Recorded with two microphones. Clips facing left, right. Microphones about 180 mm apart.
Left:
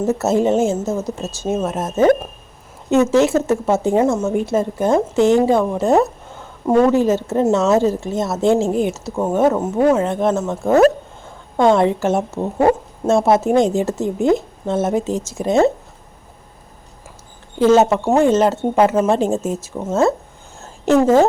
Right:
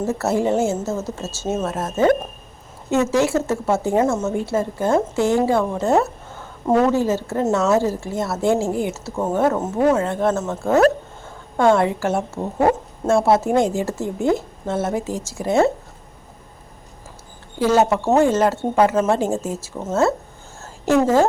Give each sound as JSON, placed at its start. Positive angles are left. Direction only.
{"t": 0.0, "sound": "a woman's voice", "side_deg": 20}
{"t": 17.6, "sound": "a woman's voice", "side_deg": 20}
{"t": 18.0, "sound": "a woman's voice", "side_deg": 10}
{"t": 20.6, "sound": "a sound", "side_deg": 20}